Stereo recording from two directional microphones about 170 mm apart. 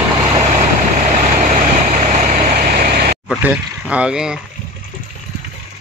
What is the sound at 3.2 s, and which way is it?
Speech, 5° right (ahead or behind).